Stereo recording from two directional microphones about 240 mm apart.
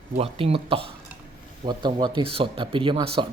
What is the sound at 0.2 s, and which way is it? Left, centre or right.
Speech, right.